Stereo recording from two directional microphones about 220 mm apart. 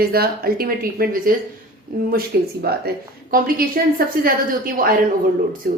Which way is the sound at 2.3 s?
45° right (ahead or behind).